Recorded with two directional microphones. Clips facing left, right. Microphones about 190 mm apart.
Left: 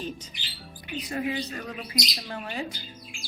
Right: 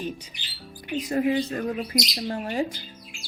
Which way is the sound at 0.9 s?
45° right (ahead or behind).